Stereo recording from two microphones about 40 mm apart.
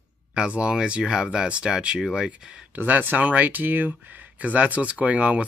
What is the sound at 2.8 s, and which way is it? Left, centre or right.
Speech, right.